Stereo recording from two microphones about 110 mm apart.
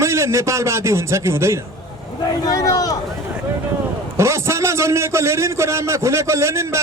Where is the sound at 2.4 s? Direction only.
35° left (ahead or behind).